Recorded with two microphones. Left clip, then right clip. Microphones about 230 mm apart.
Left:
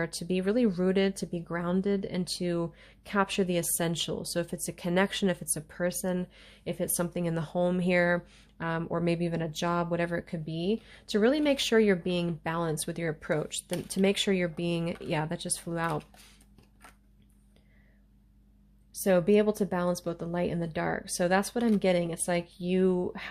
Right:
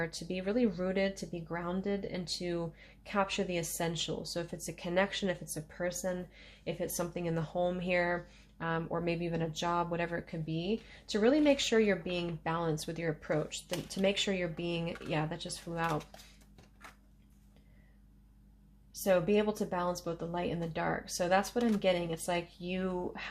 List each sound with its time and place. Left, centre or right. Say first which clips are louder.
0.0 s speech: left 6 dB; left
19.0 s speech: left 5 dB; left